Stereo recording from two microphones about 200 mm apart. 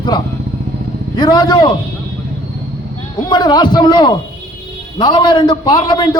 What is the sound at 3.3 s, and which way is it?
A man's voice, 20° left (ahead or behind).